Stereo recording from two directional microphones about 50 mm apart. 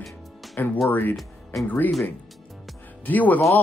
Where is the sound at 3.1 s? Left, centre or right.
Left.